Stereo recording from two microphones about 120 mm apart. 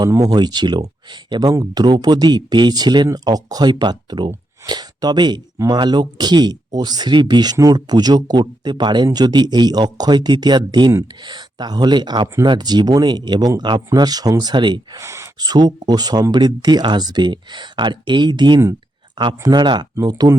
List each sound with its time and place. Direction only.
0.1 s speech: 35° right (ahead or behind)
15.0 s speech: 25° right (ahead or behind)
15.4 s speech: 35° right (ahead or behind)